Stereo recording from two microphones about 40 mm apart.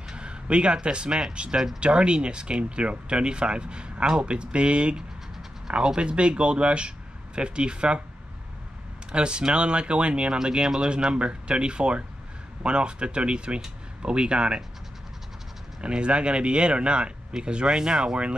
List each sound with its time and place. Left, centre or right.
0.1 s speech: right
9.1 s speech: right
15.8 s speech: right